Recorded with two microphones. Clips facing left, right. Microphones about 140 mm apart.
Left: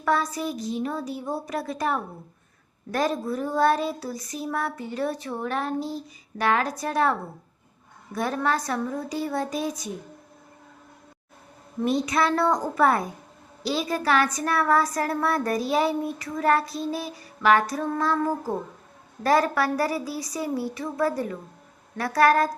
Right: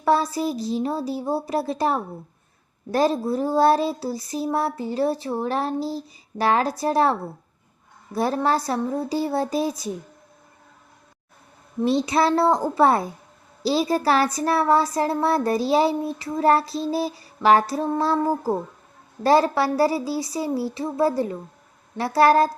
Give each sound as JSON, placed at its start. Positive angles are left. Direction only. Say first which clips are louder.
{"t": 0.0, "sound": "a child's voice", "louder": "right 4 dB", "side_deg": -30}
{"t": 11.9, "sound": "a woman's voice", "louder": "right 3 dB", "side_deg": -30}